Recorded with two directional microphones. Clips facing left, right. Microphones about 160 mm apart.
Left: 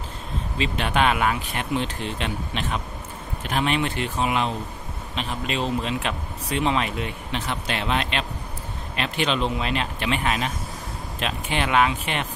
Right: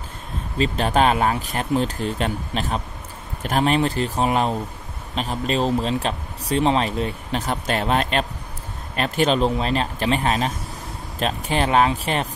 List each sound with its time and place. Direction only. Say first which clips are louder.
0.6 s speech: right 4 dB; 40° right (ahead or behind)